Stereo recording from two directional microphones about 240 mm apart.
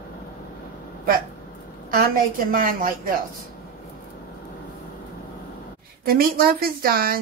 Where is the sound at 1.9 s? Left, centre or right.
Right.